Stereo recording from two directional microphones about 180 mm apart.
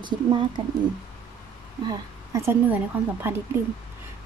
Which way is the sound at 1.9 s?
15° right (ahead or behind).